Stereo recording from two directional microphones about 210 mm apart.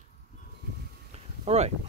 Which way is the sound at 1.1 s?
30° right (ahead or behind).